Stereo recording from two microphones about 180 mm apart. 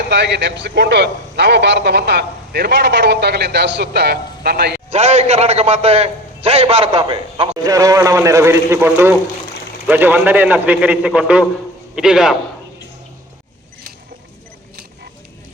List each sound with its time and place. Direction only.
0.1 s a man's voice: 70° right (ahead or behind)
4.9 s a man's voice: 40° right (ahead or behind)
7.6 s a man's voice: 20° right (ahead or behind); by 12.4 s 5° right (ahead or behind)